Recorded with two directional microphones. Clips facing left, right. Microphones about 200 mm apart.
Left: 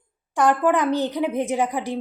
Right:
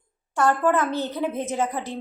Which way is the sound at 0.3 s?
15° left (ahead or behind).